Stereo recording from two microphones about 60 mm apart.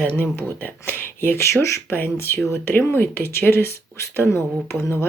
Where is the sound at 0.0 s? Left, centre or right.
Left.